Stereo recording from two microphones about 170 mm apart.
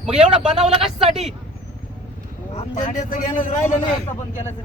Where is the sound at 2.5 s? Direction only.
40° left (ahead or behind).